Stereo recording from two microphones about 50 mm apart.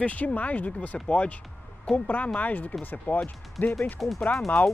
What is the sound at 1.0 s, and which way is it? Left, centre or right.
Music, left.